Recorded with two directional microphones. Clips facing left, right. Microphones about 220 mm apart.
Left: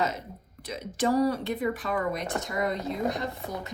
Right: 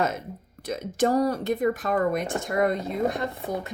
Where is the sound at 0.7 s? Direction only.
45° right (ahead or behind).